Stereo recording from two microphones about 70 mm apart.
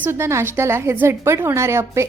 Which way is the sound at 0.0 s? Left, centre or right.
Right.